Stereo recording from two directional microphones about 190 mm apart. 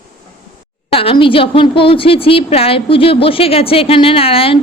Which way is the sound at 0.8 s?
30° left (ahead or behind).